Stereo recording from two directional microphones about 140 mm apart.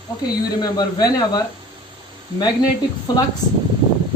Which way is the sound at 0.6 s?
30° left (ahead or behind).